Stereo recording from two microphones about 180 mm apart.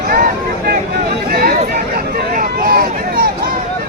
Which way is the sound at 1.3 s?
55° right (ahead or behind).